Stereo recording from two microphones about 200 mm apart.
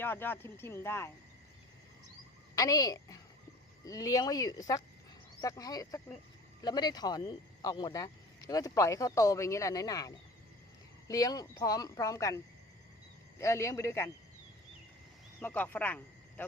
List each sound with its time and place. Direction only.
0.0 s speech: 10° left (ahead or behind)
2.6 s speech: 15° left (ahead or behind)
13.4 s speech: 15° left (ahead or behind)
15.4 s speech: 10° left (ahead or behind)